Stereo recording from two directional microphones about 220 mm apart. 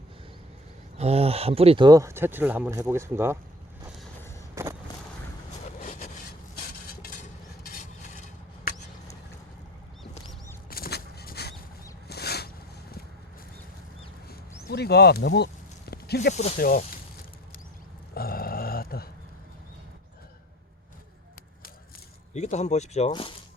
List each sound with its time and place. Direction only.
0.9 s speech: 30° right (ahead or behind); by 3.3 s 10° right (ahead or behind)
4.5 s vehicle: 15° right (ahead or behind)
5.6 s train: 35° left (ahead or behind)
6.8 s cutlery: 40° left (ahead or behind)
10.7 s a sound: 45° left (ahead or behind)
14.7 s speech: 50° left (ahead or behind)
15.9 s a sound: 45° left (ahead or behind)
16.3 s speech: 30° left (ahead or behind)
16.6 s speech: 40° left (ahead or behind)
18.1 s grunt: 45° left (ahead or behind)
22.3 s speech: 30° left (ahead or behind)